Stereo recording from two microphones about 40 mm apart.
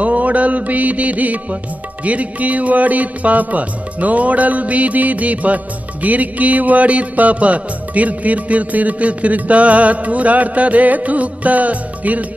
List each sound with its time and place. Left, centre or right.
0.0 s music: right